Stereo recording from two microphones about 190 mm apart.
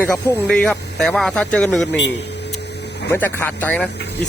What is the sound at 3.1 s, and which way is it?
Speech, 10° left (ahead or behind).